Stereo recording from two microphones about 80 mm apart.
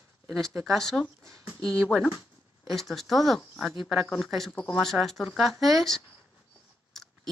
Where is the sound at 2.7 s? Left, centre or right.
Centre.